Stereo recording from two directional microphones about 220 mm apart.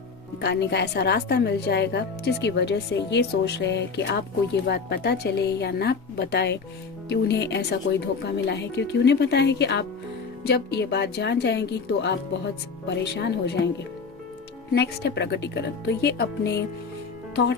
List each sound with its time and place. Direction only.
0.4 s speech: 50° left (ahead or behind)
14.7 s speech: 50° left (ahead or behind)